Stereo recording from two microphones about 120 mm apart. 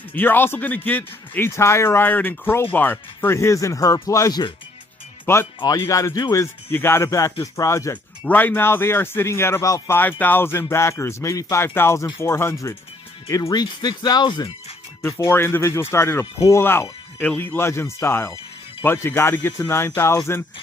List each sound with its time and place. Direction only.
0.1 s speech: 15° left (ahead or behind)
5.6 s speech: 40° left (ahead or behind)
5.9 s speech: 25° left (ahead or behind)
15.0 s speech: 25° left (ahead or behind)